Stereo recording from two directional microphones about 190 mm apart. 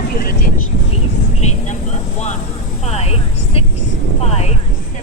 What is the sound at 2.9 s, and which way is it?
Vehicle, 35° left (ahead or behind).